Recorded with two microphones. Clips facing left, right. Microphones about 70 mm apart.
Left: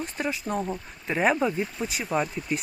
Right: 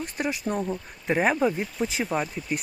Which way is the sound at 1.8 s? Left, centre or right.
Centre.